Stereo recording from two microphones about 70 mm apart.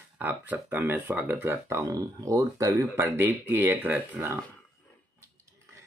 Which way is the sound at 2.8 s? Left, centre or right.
Right.